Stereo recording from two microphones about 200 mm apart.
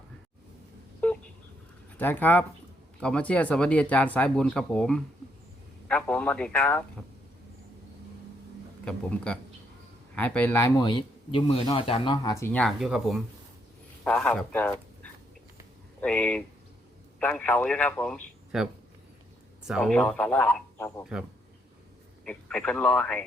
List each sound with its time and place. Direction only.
1.0 s telephone dialing: 5° left (ahead or behind)
2.0 s speech: 10° left (ahead or behind)
8.8 s speech: 5° left (ahead or behind)
21.0 s speech: 5° right (ahead or behind)